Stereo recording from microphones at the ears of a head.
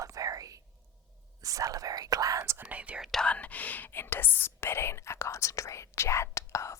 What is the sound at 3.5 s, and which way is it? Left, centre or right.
Speech, left.